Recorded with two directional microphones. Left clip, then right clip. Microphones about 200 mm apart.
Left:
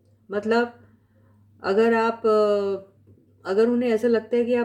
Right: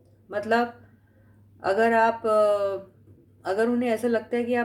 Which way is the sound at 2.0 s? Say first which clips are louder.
Left 1 dB; 40° left (ahead or behind).